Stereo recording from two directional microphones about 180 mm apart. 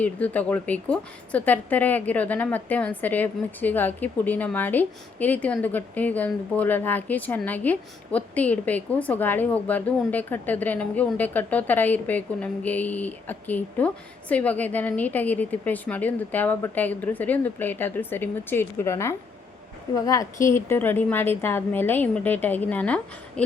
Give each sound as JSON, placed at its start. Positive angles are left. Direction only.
{"t": 0.0, "sound": "a woman's voice", "side_deg": 10}